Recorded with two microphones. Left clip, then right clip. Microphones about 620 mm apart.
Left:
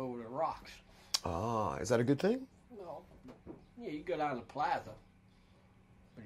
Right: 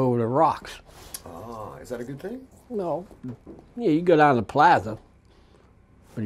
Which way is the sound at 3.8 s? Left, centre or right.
Right.